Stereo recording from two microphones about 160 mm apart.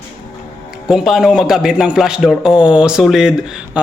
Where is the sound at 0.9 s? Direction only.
Centre (ahead or behind).